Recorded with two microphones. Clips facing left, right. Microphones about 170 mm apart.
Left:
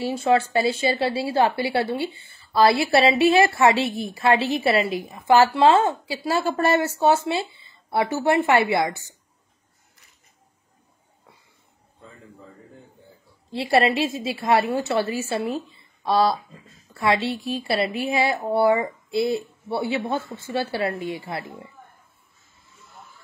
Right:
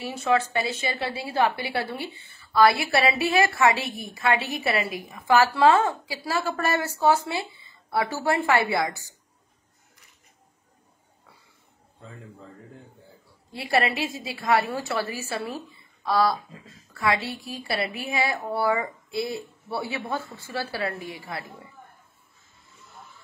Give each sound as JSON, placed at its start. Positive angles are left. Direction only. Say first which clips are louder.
{"t": 0.0, "sound": "a woman's voice", "louder": "left 4 dB", "side_deg": 30}
{"t": 13.5, "sound": "a woman's voice", "louder": "left 5 dB", "side_deg": 25}